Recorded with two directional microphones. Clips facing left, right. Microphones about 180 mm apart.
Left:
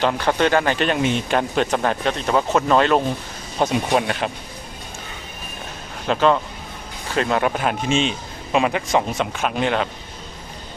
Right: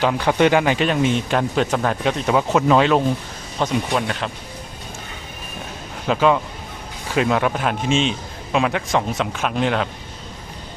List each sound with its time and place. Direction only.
0.0 s speech: 10° right (ahead or behind)
3.6 s speech: 15° left (ahead or behind)
6.1 s speech: 5° right (ahead or behind)